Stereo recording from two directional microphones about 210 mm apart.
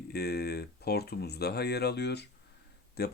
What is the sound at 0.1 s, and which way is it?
Speech, 50° left (ahead or behind).